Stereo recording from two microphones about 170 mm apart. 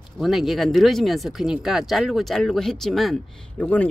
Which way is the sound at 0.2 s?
Centre (ahead or behind).